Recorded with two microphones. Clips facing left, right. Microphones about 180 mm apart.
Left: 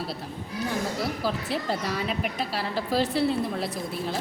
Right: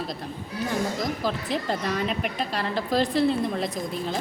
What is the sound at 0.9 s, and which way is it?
A woman's voice, 10° left (ahead or behind).